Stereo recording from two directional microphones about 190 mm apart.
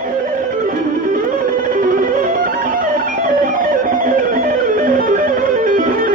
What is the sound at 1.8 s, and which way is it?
Music, 50° right (ahead or behind).